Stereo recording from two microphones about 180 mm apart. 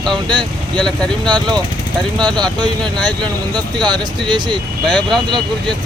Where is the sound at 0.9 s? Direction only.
5° left (ahead or behind).